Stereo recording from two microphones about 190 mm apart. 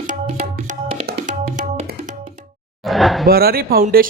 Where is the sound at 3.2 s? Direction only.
55° right (ahead or behind).